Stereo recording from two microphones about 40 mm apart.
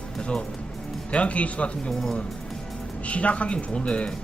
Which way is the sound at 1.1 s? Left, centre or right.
Left.